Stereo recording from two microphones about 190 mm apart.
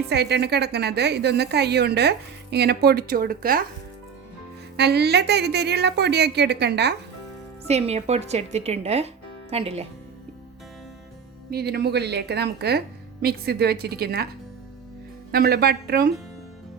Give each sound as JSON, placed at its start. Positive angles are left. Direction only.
{"t": 0.1, "sound": "a woman's voice", "side_deg": -60}
{"t": 4.8, "sound": "a woman's voice", "side_deg": -60}
{"t": 7.7, "sound": "speech", "side_deg": -35}
{"t": 11.5, "sound": "a woman's voice", "side_deg": -55}
{"t": 15.3, "sound": "a woman's voice", "side_deg": -55}